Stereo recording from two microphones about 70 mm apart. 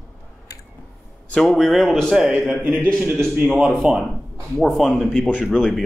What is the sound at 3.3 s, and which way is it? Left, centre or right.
Speech, right.